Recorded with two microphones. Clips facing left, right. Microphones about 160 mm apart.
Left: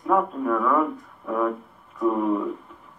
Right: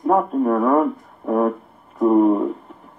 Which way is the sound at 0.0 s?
40° right (ahead or behind).